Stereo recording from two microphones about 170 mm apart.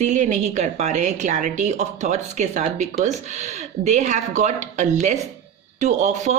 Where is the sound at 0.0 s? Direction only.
45° right (ahead or behind).